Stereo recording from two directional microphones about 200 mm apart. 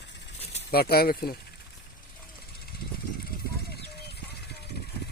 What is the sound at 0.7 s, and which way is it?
Speech, 50° left (ahead or behind).